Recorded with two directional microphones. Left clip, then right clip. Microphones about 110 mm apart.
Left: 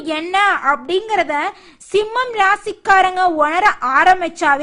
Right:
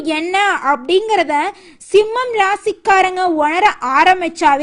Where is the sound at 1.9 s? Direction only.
10° right (ahead or behind).